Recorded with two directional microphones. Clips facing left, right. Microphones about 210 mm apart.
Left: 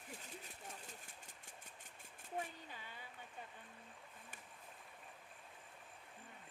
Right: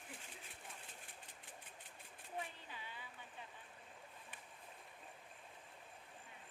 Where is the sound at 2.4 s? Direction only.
45° left (ahead or behind).